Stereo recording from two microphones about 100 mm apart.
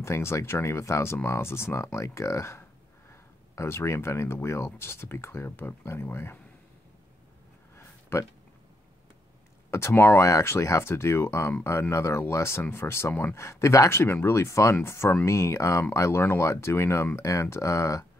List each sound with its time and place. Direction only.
0.0 s speech: 25° left (ahead or behind)
7.7 s a sound: 25° left (ahead or behind)
9.7 s speech: 25° left (ahead or behind)